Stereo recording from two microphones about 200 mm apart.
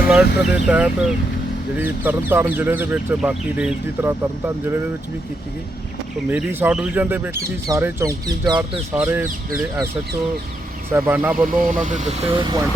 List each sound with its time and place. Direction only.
0.1 s speech: 5° right (ahead or behind)
6.2 s speech: 10° right (ahead or behind)
10.9 s speech: 10° right (ahead or behind)
11.7 s speech: 40° right (ahead or behind)
12.4 s speech: 20° right (ahead or behind)